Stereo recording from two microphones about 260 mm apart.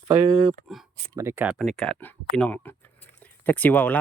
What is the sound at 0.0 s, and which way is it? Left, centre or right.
Speech, right.